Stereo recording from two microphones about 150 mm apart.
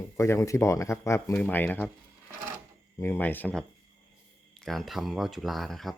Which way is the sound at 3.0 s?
15° left (ahead or behind).